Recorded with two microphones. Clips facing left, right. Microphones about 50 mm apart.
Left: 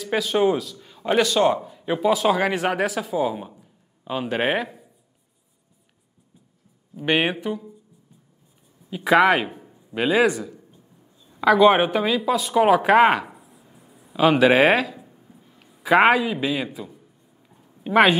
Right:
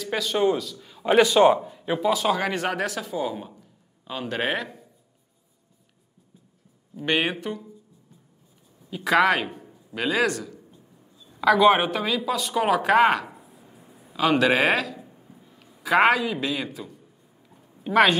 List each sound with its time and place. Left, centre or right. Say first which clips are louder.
0.0 s a man's voice: left 3 dB; centre
2.0 s speech: left 3 dB; centre
7.0 s speech: left 3 dB; centre
8.9 s speech: left 3 dB; centre
13.5 s a sound: right 1 dB; centre
14.1 s speech: left 4 dB; centre
15.0 s a sound: right 1 dB; centre
15.8 s speech: left 3 dB; centre